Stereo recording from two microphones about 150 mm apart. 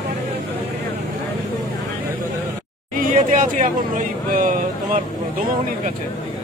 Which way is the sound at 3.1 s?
60° right (ahead or behind).